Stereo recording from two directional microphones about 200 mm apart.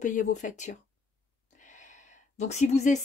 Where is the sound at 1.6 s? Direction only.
40° left (ahead or behind).